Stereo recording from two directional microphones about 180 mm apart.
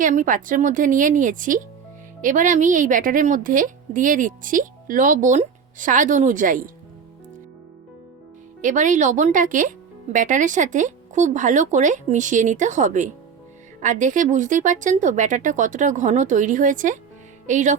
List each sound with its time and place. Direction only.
0.0 s a woman's voice: 45° right (ahead or behind)
8.6 s a woman's voice: 45° right (ahead or behind)